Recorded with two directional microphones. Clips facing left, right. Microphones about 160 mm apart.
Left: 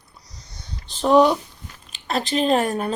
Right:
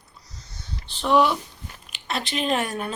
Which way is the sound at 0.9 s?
40° left (ahead or behind).